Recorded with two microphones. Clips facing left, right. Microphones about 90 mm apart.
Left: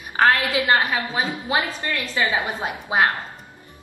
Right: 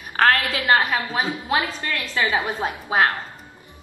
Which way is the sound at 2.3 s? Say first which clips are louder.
Right 1 dB; 15° left (ahead or behind).